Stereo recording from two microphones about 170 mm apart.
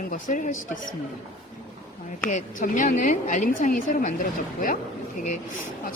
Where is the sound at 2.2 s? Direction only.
50° left (ahead or behind).